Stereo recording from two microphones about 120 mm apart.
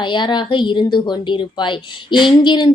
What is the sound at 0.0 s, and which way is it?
A woman's voice, 40° left (ahead or behind).